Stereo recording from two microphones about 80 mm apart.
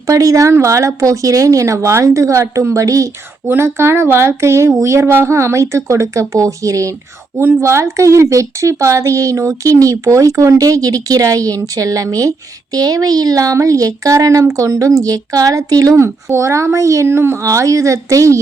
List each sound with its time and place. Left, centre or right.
0.1 s speech: right
3.4 s speech: right
7.3 s speech: right
16.0 s speech: right